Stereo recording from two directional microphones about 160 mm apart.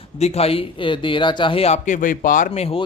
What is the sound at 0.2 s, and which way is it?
Speech, 40° left (ahead or behind).